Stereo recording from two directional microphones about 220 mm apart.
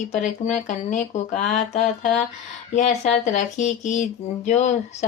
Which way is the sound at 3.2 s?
35° left (ahead or behind).